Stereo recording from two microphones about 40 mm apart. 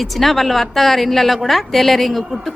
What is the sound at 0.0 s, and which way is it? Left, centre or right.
A woman's voice, centre.